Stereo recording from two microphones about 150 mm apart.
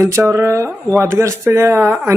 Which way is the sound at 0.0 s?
20° right (ahead or behind).